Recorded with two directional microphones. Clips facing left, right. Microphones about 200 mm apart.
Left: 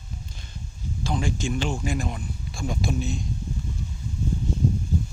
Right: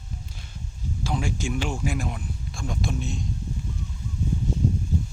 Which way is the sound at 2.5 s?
5° left (ahead or behind).